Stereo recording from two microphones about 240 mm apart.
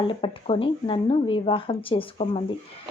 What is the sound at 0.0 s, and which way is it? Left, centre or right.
Speech, left.